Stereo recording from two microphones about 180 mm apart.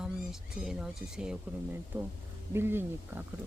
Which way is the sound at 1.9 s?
10° right (ahead or behind).